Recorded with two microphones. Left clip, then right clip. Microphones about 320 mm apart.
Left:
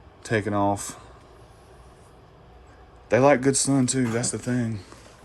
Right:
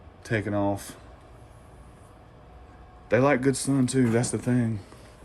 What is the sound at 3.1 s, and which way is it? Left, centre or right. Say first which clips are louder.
Speech: left 4 dB; centre.